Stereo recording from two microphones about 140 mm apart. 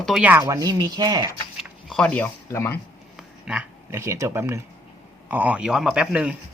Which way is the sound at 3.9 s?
20° right (ahead or behind).